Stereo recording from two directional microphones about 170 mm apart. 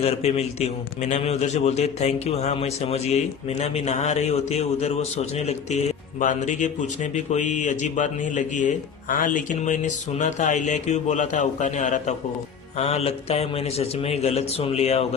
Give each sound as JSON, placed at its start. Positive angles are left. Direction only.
{"t": 0.0, "sound": "a man's voice", "side_deg": 35}